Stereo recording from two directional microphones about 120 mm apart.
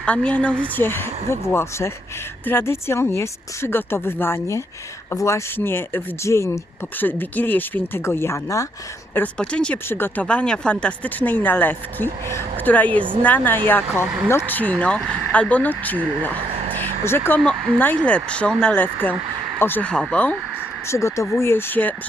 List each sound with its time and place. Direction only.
0.0 s speech: 10° left (ahead or behind); by 8.6 s 25° left (ahead or behind)
9.1 s speech: 10° left (ahead or behind)
13.9 s speech: 10° right (ahead or behind)
14.3 s speech: 20° left (ahead or behind)
20.8 s speech: 25° left (ahead or behind)